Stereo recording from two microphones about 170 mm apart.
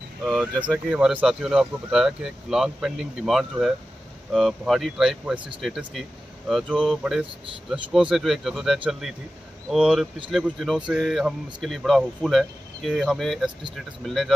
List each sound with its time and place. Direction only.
0.2 s speech: centre (ahead or behind)